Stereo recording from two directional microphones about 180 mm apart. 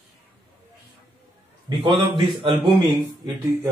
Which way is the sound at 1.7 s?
25° right (ahead or behind).